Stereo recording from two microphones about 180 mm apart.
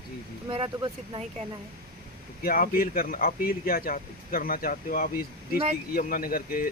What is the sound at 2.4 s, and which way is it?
Speech, 55° left (ahead or behind).